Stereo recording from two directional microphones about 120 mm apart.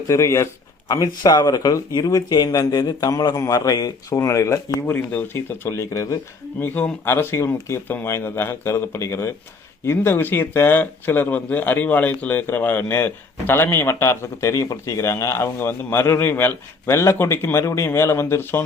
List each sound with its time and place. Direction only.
0.1 s a man's voice: 25° left (ahead or behind)
6.6 s speech: 15° left (ahead or behind)